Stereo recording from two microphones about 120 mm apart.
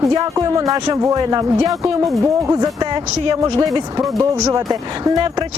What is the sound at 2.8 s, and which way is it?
Speech, 35° right (ahead or behind).